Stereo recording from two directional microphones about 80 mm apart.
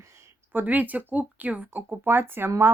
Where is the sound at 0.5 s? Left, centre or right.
Right.